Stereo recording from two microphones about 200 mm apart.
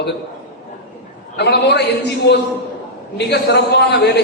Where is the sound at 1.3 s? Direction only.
55° left (ahead or behind).